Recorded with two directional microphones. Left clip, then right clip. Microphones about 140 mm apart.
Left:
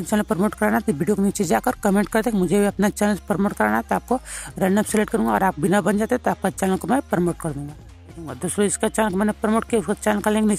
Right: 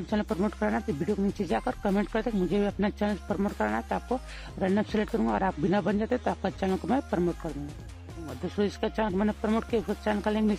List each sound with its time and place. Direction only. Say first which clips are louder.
0.1 s speech: left 8 dB; 30° left (ahead or behind)